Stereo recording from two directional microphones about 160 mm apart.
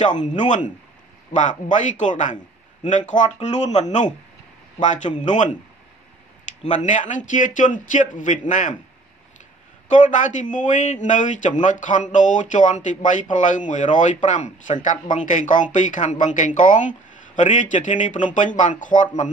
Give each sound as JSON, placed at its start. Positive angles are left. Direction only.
{"t": 0.0, "sound": "a man's voice", "side_deg": 50}
{"t": 6.6, "sound": "a man's voice", "side_deg": 50}
{"t": 9.8, "sound": "a man's voice", "side_deg": 50}